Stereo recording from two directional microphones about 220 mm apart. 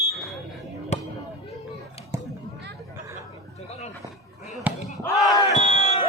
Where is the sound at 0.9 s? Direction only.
30° left (ahead or behind).